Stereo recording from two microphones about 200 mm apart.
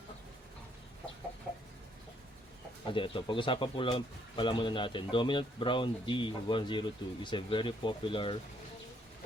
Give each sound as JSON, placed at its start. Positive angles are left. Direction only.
{"t": 2.8, "sound": "speech", "side_deg": 25}